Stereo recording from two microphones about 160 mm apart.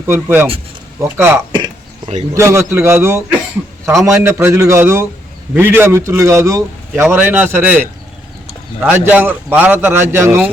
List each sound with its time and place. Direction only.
0.0 s a man's voice: 15° right (ahead or behind)